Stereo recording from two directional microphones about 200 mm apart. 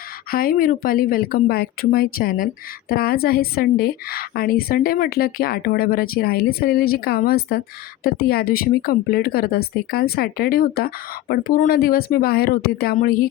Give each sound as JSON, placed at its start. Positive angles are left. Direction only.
{"t": 0.3, "sound": "speech", "side_deg": 45}